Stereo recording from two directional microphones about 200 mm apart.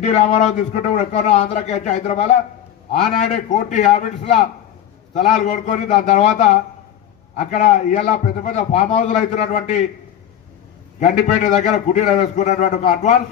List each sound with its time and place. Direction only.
0.0 s a man's voice: 35° left (ahead or behind)
11.0 s a man's voice: 35° left (ahead or behind)